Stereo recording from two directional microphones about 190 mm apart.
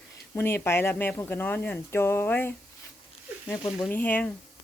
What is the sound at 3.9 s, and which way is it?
Speech, 10° left (ahead or behind).